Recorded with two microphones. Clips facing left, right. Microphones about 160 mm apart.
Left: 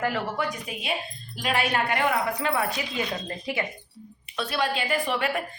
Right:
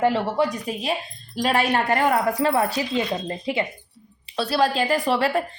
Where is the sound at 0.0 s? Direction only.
30° right (ahead or behind).